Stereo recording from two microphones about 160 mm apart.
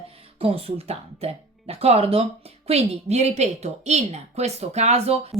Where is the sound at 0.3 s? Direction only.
35° right (ahead or behind).